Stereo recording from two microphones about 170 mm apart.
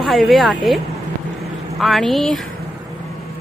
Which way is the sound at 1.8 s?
Centre (ahead or behind).